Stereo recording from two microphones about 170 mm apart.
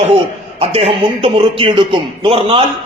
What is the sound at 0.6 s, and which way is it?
A man's voice, 35° right (ahead or behind).